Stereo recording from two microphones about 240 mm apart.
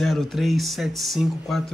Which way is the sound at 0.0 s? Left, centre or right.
Centre.